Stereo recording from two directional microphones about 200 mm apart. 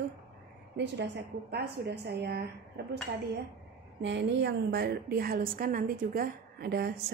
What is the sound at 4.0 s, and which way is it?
A woman's voice, 60° right (ahead or behind).